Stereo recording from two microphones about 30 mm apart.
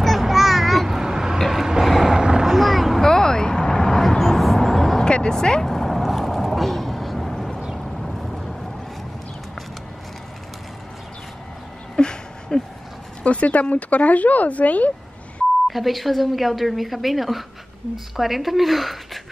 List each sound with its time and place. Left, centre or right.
0.0 s a sound: centre
1.8 s vehicle: centre
2.1 s boat: right
2.5 s a sound: centre
3.0 s vehicle: left
4.2 s a sound: centre
4.6 s vehicle: centre
5.0 s vehicle: left
5.3 s speech: left
5.7 s vehicle: centre
11.9 s a sound: left
13.2 s speech: left
15.7 s speech: centre